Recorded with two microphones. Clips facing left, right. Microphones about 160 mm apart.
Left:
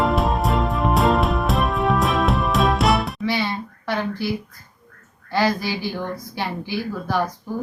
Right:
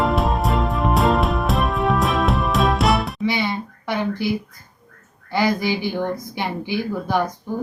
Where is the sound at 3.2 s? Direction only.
15° right (ahead or behind).